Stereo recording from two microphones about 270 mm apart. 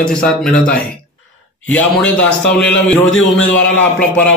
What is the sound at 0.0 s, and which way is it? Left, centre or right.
Speech, centre.